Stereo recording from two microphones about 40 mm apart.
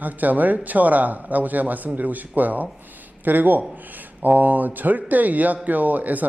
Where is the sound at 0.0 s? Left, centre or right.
Right.